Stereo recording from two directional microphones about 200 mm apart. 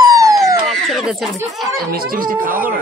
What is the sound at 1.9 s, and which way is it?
Speech, 45° right (ahead or behind).